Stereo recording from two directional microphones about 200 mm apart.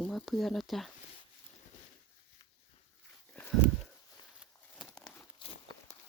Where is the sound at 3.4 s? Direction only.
10° left (ahead or behind).